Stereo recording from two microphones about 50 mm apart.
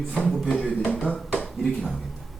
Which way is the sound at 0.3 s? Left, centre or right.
Centre.